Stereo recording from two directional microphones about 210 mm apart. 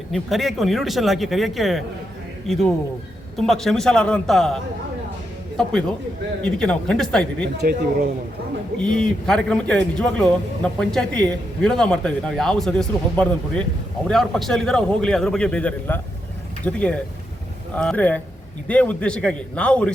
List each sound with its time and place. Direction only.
0.1 s a man's voice: centre (ahead or behind)
6.4 s a man's voice: 5° left (ahead or behind)
7.4 s speech: 50° right (ahead or behind)
8.8 s a man's voice: 5° left (ahead or behind)